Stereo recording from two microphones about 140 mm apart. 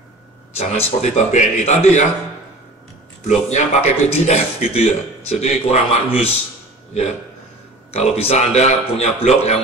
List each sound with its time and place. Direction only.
0.6 s a man's voice: 50° left (ahead or behind)
3.3 s a man's voice: 55° left (ahead or behind)
7.9 s a man's voice: 45° left (ahead or behind)